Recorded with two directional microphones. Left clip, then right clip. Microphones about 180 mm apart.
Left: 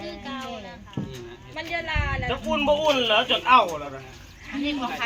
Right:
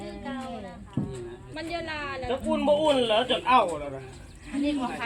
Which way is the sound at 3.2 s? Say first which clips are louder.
Left 4 dB; 25° right (ahead or behind).